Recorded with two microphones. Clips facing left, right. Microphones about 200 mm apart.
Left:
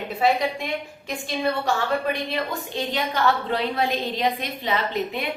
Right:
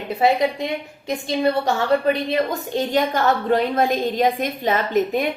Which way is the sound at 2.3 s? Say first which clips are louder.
Right 6 dB; 45° right (ahead or behind).